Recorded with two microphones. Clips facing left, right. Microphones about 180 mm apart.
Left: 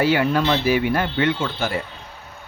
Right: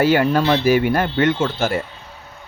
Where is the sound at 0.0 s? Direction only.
45° right (ahead or behind).